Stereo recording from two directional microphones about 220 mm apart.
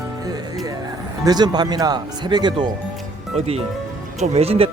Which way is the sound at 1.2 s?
20° right (ahead or behind).